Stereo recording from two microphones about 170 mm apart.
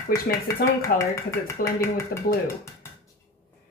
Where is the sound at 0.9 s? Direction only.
60° left (ahead or behind).